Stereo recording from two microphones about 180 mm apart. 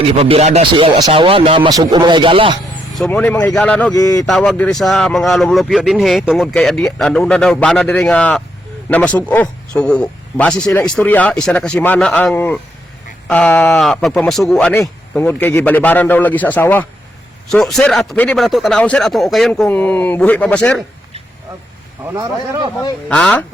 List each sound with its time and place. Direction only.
0.2 s speech: 35° right (ahead or behind)
2.9 s speech: 5° left (ahead or behind)
3.9 s speech: 20° left (ahead or behind)
4.3 s a man's voice: 5° left (ahead or behind)
22.1 s speech: 20° right (ahead or behind)
23.0 s speech: 5° left (ahead or behind)